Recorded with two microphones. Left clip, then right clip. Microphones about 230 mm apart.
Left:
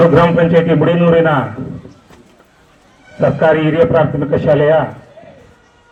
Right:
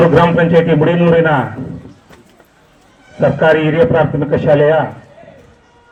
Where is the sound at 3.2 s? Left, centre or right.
Right.